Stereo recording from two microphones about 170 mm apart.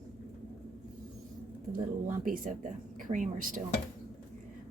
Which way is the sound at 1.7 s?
55° right (ahead or behind).